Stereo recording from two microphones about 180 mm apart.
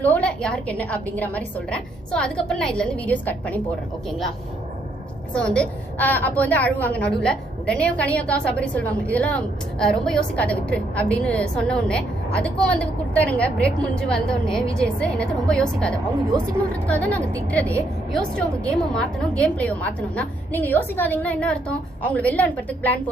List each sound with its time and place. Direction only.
0.0 s a woman's voice: 5° left (ahead or behind)
5.3 s a woman's voice: 5° left (ahead or behind)